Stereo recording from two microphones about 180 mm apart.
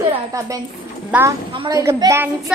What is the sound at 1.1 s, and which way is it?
Speech, 10° right (ahead or behind).